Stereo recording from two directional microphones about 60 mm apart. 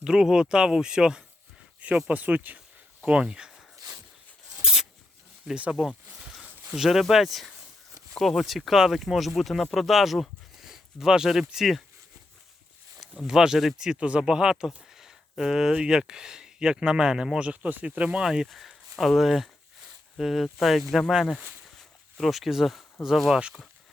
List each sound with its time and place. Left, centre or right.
0.0 s speech: centre
2.0 s speech: right
3.8 s a sound: right
4.6 s zipper: centre
6.7 s speech: centre
13.0 s speech: centre
18.3 s speech: centre
21.8 s a sound: centre
23.0 s speech: centre